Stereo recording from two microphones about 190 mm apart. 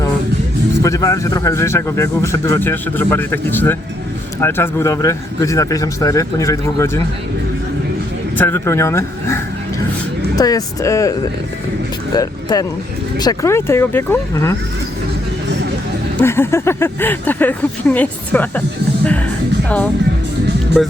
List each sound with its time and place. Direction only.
0.8 s speech: 15° left (ahead or behind)
8.4 s speech: 10° left (ahead or behind)
12.1 s speech: 20° left (ahead or behind)
16.1 s speech: 10° left (ahead or behind)